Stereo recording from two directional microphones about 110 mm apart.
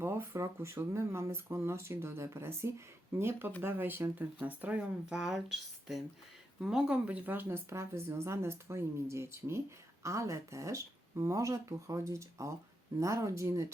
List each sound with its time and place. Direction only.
0.0 s a woman's voice: 20° right (ahead or behind)